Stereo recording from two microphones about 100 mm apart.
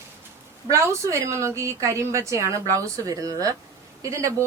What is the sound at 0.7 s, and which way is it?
A woman's voice, 30° right (ahead or behind).